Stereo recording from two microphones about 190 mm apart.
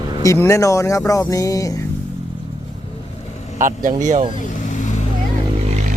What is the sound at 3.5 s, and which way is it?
Speech, 45° right (ahead or behind).